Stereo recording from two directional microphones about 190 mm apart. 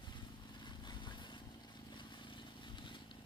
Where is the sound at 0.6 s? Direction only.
25° left (ahead or behind).